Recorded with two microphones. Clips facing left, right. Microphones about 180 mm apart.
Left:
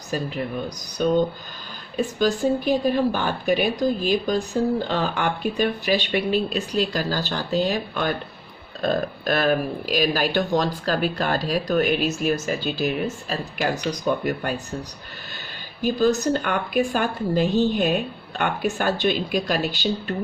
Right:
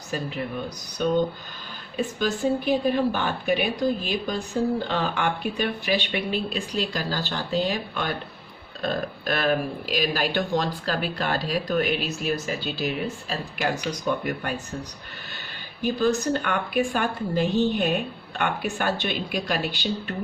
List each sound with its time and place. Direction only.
0.1 s speech: 40° left (ahead or behind)
15.8 s speech: 40° left (ahead or behind)